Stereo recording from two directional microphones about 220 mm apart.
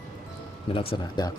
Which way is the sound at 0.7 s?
25° left (ahead or behind).